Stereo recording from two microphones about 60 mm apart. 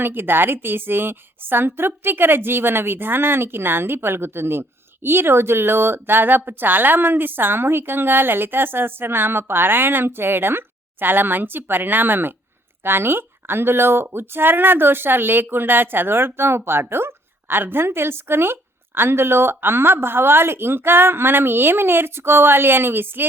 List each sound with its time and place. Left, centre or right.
0.0 s a woman's voice: right